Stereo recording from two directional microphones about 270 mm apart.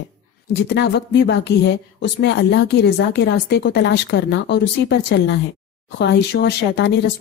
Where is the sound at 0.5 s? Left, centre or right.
Left.